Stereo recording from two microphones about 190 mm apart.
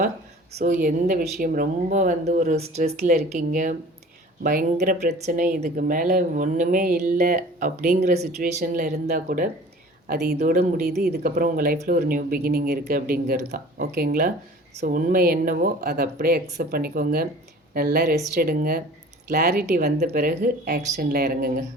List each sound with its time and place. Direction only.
0.5 s a woman's voice: 45° right (ahead or behind)
8.0 s a woman's voice: 35° right (ahead or behind)
10.8 s a woman's voice: 55° right (ahead or behind)
19.4 s a woman's voice: 40° right (ahead or behind); by 21.6 s 55° right (ahead or behind)